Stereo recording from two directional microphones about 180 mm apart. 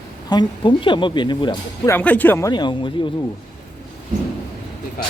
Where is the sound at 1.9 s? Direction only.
10° left (ahead or behind).